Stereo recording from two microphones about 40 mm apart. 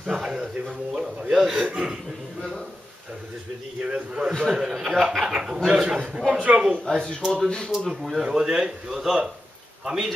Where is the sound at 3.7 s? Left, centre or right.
Right.